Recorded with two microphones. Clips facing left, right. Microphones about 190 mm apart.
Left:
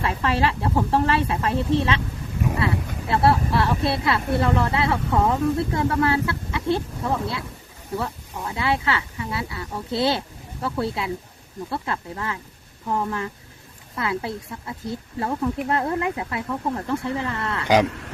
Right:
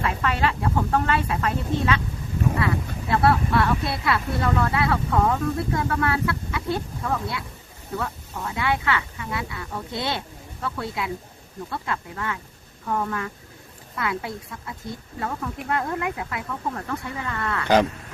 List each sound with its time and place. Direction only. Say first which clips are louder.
0.0 s speech: left 2 dB; 30° left (ahead or behind)
17.6 s speech: even; 10° left (ahead or behind)